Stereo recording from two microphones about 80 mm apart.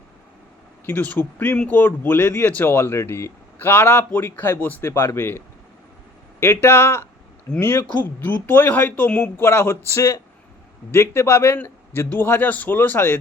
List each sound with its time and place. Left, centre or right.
0.9 s a man's voice: left
6.4 s a man's voice: left
9.4 s a man's voice: left